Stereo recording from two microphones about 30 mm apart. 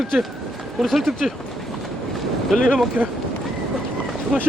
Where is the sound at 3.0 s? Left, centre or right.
Right.